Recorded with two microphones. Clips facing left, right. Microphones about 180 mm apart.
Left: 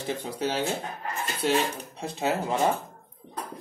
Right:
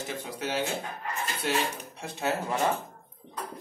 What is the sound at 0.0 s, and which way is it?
Speech, 30° left (ahead or behind).